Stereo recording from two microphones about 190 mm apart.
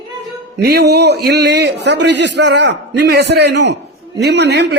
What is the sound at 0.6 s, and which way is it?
A man's voice, 60° right (ahead or behind).